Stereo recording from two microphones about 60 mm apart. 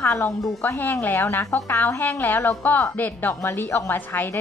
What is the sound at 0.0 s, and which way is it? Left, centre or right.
A woman's voice, left.